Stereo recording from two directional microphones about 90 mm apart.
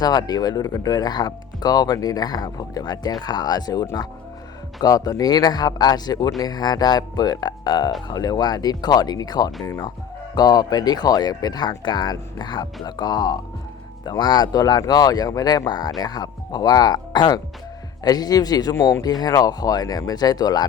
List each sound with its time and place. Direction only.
0.0 s speech: 50° left (ahead or behind)